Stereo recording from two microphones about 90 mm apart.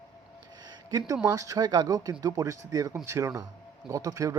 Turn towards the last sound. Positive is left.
turn(degrees=-40)  # may be behind; listen again after turning